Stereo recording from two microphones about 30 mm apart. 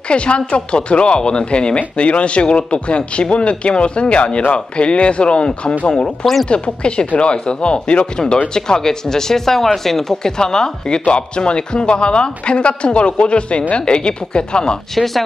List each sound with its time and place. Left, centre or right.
0.1 s speech: left
8.5 s speech: left